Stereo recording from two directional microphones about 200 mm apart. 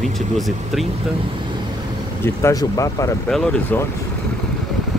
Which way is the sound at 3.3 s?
5° left (ahead or behind).